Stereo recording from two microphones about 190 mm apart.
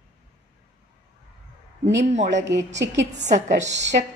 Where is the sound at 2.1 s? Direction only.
40° right (ahead or behind).